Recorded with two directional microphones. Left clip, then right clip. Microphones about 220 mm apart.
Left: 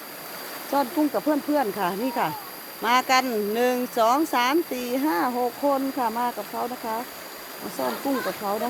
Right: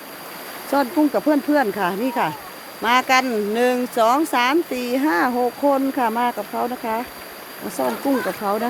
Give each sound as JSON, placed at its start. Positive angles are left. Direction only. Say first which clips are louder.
{"t": 0.7, "sound": "speech", "louder": "right 5 dB", "side_deg": -20}